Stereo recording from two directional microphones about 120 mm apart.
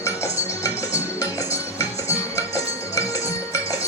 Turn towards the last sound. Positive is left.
turn(degrees=30)  # may be behind; listen again after turning